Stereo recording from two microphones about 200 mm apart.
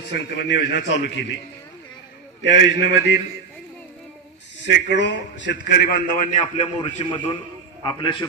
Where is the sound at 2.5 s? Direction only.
60° left (ahead or behind).